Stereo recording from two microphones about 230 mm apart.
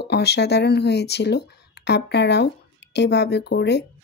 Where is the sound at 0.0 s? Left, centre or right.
Left.